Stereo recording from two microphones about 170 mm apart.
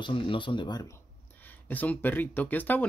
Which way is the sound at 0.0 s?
30° left (ahead or behind).